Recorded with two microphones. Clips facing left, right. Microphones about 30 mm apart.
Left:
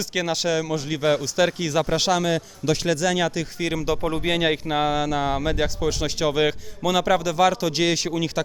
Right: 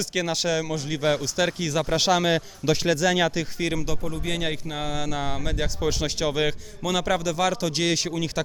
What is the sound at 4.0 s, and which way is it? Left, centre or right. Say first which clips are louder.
Speech: left 6 dB; left.